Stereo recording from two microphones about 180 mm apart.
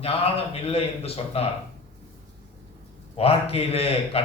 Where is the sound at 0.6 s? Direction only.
30° left (ahead or behind).